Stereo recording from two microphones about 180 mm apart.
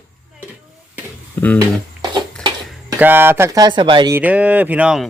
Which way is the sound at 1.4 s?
10° left (ahead or behind).